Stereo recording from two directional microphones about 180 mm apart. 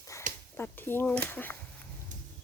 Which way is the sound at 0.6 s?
10° left (ahead or behind).